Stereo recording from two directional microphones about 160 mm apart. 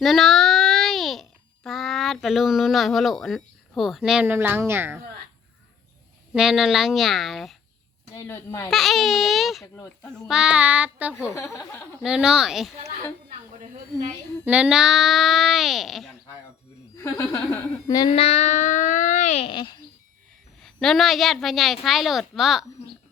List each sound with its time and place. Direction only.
0.0 s a child's voice: centre (ahead or behind); by 5.0 s 15° right (ahead or behind)
6.3 s a woman's voice: 5° right (ahead or behind)
8.1 s speech: 15° left (ahead or behind)
8.7 s a woman's voice: centre (ahead or behind)
9.7 s speech: 20° left (ahead or behind)
10.2 s a child's voice: 5° right (ahead or behind)
11.3 s speech: 15° left (ahead or behind)
12.0 s a woman's voice: 5° right (ahead or behind)
14.4 s a woman's voice: 5° right (ahead or behind)
17.0 s speech: 20° left (ahead or behind)
18.1 s music: 40° left (ahead or behind)
19.5 s speech: 30° left (ahead or behind)
20.6 s a woman's voice: 5° left (ahead or behind)